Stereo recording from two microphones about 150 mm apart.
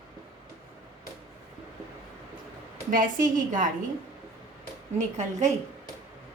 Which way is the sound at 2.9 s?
65° right (ahead or behind).